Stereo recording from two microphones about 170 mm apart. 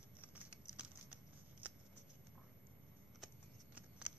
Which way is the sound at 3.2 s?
5° right (ahead or behind).